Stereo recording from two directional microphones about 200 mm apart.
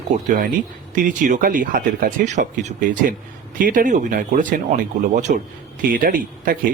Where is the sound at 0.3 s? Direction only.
45° right (ahead or behind).